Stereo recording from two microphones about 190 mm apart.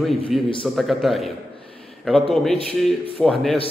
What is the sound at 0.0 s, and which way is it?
A man's voice, centre (ahead or behind).